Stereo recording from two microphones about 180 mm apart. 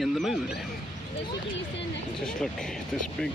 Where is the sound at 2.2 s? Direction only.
Centre (ahead or behind).